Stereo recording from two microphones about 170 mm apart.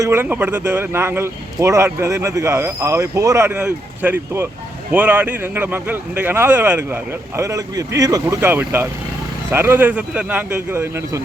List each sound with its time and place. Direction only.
0.0 s speech: 15° right (ahead or behind)